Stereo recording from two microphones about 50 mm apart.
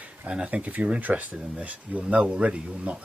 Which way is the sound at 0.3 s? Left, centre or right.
Right.